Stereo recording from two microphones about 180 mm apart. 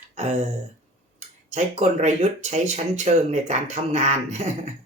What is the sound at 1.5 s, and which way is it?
Speech, 40° right (ahead or behind).